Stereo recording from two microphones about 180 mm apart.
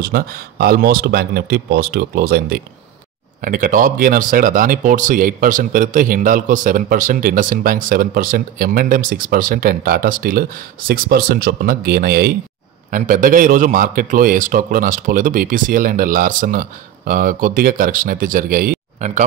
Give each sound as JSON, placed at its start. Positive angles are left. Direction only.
{"t": 0.0, "sound": "speech", "side_deg": -55}
{"t": 3.3, "sound": "speech", "side_deg": -50}
{"t": 12.9, "sound": "speech", "side_deg": -50}